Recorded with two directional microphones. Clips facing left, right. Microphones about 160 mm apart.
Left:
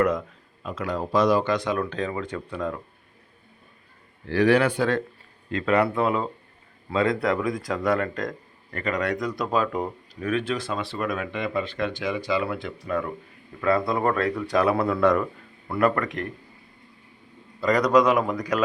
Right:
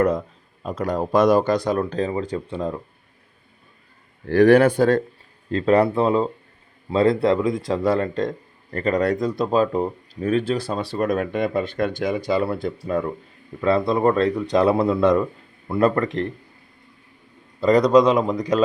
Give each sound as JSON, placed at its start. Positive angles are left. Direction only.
{"t": 0.0, "sound": "speech", "side_deg": -35}
{"t": 4.3, "sound": "speech", "side_deg": -50}
{"t": 17.6, "sound": "speech", "side_deg": -25}